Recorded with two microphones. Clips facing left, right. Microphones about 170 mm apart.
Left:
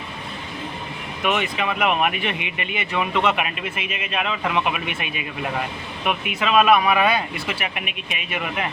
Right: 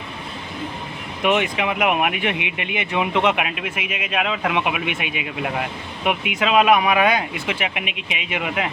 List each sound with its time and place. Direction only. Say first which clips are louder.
1.2 s speech: right 3 dB; 20° right (ahead or behind)
3.4 s speech: right 1 dB; 75° right (ahead or behind)
4.1 s speech: right 2 dB; 15° right (ahead or behind)
7.8 s speech: right 2 dB; 90° right
8.1 s speech: right 3 dB; 15° right (ahead or behind)